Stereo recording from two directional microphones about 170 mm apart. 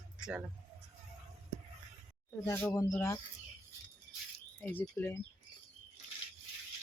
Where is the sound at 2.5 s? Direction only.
15° left (ahead or behind).